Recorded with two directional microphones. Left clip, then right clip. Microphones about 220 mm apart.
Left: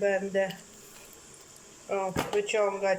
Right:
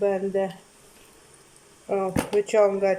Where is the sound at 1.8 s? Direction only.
20° right (ahead or behind).